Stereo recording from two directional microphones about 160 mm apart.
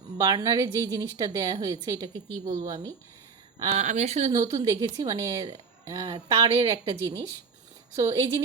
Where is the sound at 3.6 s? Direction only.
45° right (ahead or behind).